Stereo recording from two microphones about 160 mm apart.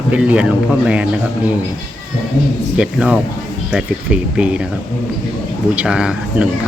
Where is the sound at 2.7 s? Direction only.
5° right (ahead or behind).